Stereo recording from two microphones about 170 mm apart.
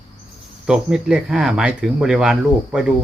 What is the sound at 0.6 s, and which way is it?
Speech, 5° right (ahead or behind).